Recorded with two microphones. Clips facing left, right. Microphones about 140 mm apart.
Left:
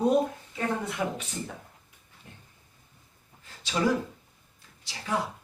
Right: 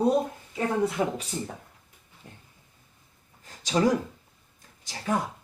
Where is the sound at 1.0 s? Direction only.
25° right (ahead or behind).